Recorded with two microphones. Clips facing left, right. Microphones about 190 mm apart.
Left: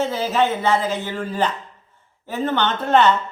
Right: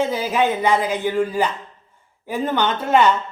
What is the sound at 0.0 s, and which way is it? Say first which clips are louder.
A woman's voice: even; 10° right (ahead or behind).